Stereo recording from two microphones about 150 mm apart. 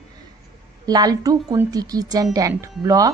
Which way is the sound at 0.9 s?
25° right (ahead or behind).